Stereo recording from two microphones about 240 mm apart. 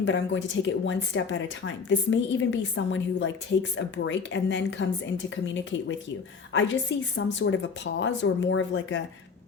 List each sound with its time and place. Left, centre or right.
0.0 s a woman's voice: left